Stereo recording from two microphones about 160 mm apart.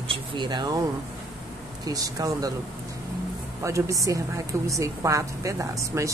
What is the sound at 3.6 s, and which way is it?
A woman's voice, 20° right (ahead or behind).